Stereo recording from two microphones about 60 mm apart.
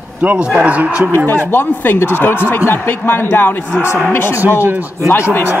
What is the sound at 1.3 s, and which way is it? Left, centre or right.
Speech, left.